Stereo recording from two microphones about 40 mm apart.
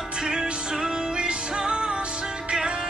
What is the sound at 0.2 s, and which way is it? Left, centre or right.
Music, centre.